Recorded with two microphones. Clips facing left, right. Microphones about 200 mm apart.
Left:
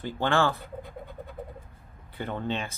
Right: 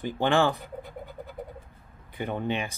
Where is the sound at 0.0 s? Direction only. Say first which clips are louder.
Right 2 dB; 15° right (ahead or behind).